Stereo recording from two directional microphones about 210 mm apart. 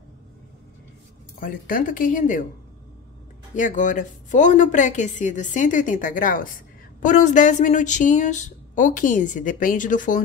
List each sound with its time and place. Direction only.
1.4 s a woman's voice: 40° left (ahead or behind)
3.5 s a woman's voice: 40° left (ahead or behind)